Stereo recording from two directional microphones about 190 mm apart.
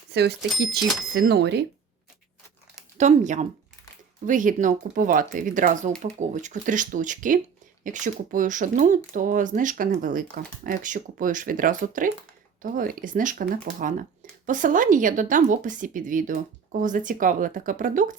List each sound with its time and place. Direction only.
0.1 s speech: 60° right (ahead or behind)
3.0 s speech: 40° right (ahead or behind)